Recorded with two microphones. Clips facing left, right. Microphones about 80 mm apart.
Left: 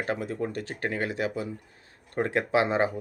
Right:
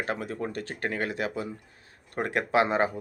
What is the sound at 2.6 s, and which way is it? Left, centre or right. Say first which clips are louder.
Speech: right 1 dB; left.